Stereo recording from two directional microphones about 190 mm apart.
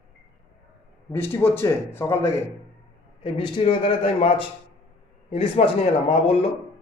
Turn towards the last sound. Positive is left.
turn(degrees=35)  # may be behind; listen again after turning